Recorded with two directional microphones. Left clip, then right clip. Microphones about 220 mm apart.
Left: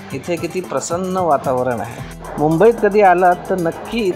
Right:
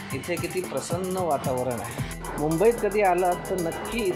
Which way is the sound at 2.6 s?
25° left (ahead or behind).